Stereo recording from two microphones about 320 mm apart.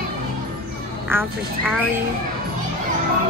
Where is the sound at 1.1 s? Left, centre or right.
Centre.